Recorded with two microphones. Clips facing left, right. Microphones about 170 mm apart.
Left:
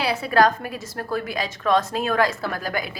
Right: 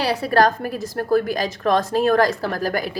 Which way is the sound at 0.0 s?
40° right (ahead or behind).